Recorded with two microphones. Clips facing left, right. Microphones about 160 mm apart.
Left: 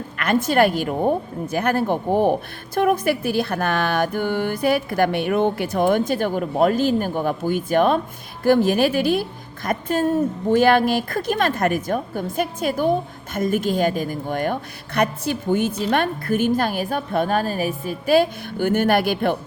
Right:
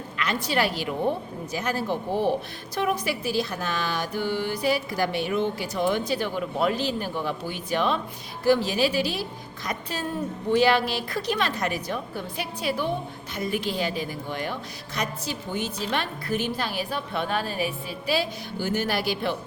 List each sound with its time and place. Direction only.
0.2 s a woman's voice: 50° left (ahead or behind)